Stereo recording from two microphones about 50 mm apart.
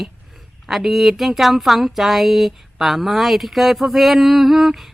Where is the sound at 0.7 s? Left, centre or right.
Centre.